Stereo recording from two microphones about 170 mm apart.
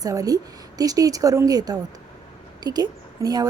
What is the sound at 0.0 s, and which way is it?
A woman's voice, 20° right (ahead or behind).